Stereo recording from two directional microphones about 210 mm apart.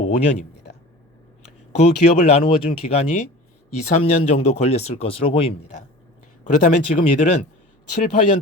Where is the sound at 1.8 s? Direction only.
30° left (ahead or behind).